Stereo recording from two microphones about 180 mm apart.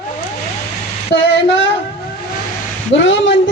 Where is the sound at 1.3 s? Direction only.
90° left.